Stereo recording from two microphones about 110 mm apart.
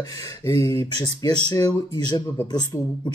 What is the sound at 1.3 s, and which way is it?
Speech, 40° left (ahead or behind).